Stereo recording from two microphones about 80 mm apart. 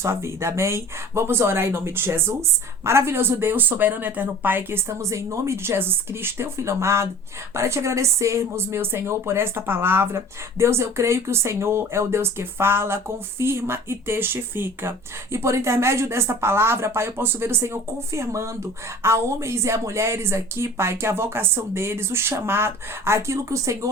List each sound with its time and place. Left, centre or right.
0.0 s speech: right